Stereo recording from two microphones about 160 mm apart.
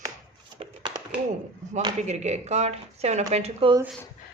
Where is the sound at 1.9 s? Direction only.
45° right (ahead or behind).